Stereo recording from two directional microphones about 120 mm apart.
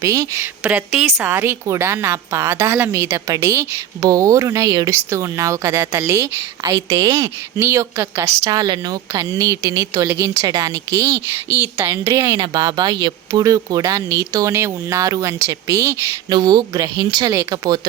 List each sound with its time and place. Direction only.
0.0 s a woman's voice: 25° right (ahead or behind)
0.6 s a woman's voice: 5° right (ahead or behind)
1.1 s a woman's voice: 20° right (ahead or behind)
8.4 s a woman's voice: 35° right (ahead or behind)
12.4 s a woman's voice: 35° right (ahead or behind)